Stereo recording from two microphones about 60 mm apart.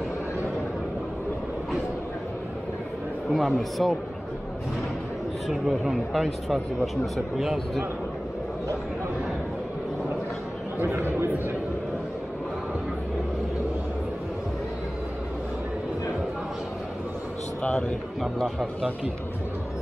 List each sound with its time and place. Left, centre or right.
3.3 s speech: centre
5.5 s speech: centre
10.8 s speech: right
17.6 s a man's voice: centre
18.2 s speech: centre